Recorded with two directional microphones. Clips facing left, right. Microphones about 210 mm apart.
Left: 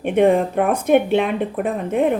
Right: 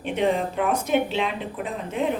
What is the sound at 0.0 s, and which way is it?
A woman's voice, 55° left (ahead or behind).